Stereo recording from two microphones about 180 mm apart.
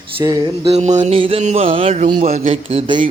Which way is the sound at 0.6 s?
35° right (ahead or behind).